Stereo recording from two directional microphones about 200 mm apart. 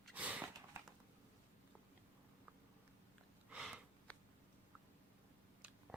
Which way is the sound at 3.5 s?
5° right (ahead or behind).